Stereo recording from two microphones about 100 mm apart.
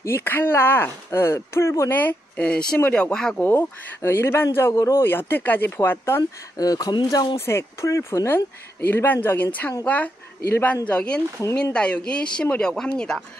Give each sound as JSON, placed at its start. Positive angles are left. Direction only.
{"t": 0.0, "sound": "speech", "side_deg": 25}
{"t": 3.3, "sound": "speech", "side_deg": 20}
{"t": 6.5, "sound": "speech", "side_deg": 40}
{"t": 7.3, "sound": "speech", "side_deg": 25}